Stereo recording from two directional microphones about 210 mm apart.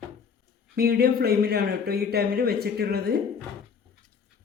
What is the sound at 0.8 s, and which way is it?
Speech, 45° right (ahead or behind).